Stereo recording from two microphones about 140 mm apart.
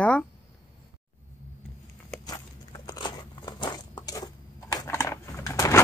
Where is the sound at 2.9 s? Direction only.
30° left (ahead or behind).